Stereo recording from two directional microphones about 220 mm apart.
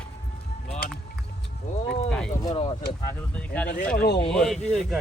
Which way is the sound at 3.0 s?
5° left (ahead or behind).